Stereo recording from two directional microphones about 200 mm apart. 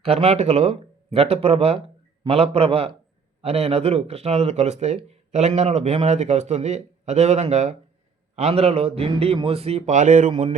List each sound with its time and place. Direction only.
0.0 s speech: 30° right (ahead or behind)